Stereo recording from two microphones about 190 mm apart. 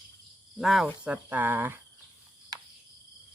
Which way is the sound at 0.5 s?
Centre (ahead or behind).